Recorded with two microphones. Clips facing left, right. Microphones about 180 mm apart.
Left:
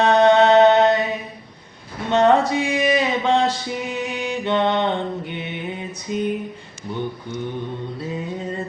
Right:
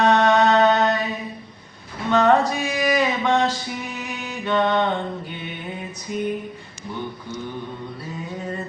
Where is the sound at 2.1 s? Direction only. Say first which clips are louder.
Left 1 dB; 25° left (ahead or behind).